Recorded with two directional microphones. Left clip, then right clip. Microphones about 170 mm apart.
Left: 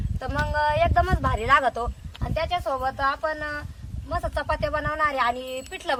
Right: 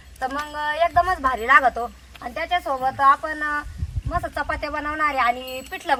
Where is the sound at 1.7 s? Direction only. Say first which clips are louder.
Right 2 dB; 30° left (ahead or behind).